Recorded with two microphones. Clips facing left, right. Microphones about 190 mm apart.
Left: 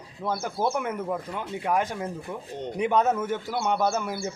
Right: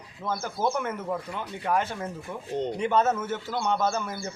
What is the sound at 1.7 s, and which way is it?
A man's voice, 10° left (ahead or behind).